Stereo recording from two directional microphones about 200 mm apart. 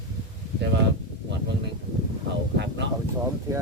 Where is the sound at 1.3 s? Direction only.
60° right (ahead or behind).